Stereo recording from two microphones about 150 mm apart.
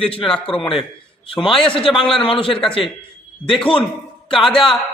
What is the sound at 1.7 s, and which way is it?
Speech, 35° left (ahead or behind).